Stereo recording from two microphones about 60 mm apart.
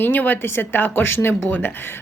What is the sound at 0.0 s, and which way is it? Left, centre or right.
Speech, left.